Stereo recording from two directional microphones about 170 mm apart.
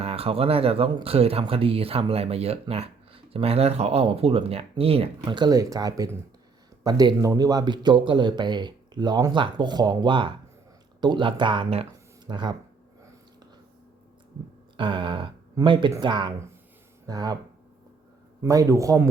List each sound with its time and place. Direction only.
0.0 s speech: 35° right (ahead or behind)
5.2 s a man's voice: 25° right (ahead or behind)
14.8 s a man's voice: 30° right (ahead or behind)
18.4 s a man's voice: 20° right (ahead or behind)